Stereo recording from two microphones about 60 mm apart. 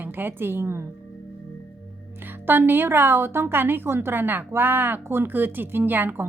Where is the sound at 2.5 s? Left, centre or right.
Right.